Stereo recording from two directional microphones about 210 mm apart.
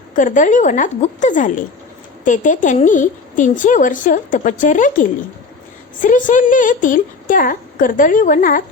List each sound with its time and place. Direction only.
0.2 s a woman's voice: 40° left (ahead or behind)